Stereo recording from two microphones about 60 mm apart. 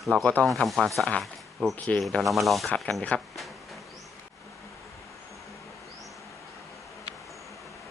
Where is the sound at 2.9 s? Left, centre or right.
Centre.